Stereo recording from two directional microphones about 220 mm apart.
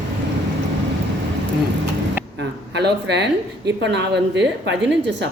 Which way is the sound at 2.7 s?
50° right (ahead or behind).